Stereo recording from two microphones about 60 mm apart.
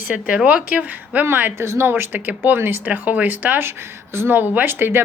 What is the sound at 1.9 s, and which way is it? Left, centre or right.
Speech, right.